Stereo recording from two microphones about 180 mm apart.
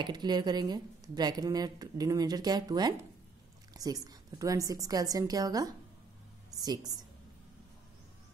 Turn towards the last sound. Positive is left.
turn(degrees=-20)  # may be behind; listen again after turning